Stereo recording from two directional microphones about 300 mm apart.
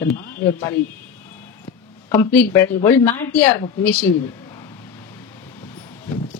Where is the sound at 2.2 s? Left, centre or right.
Centre.